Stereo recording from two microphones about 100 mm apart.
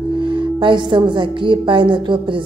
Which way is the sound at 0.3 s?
55° right (ahead or behind).